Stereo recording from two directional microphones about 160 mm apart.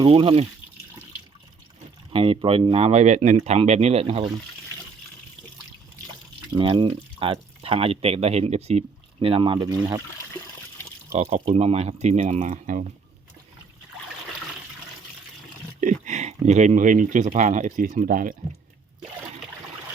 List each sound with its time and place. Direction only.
0.0 s speech: 35° right (ahead or behind)
2.1 s speech: 35° right (ahead or behind)
6.5 s speech: 30° right (ahead or behind)
11.1 s speech: 40° right (ahead or behind)
15.8 s speech: 50° right (ahead or behind)